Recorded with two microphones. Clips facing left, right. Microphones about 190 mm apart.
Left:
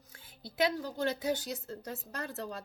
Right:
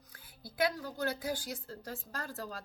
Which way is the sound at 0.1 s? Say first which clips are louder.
Left 3 dB; 25° left (ahead or behind).